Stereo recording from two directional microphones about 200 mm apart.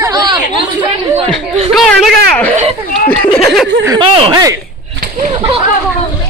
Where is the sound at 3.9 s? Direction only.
20° right (ahead or behind).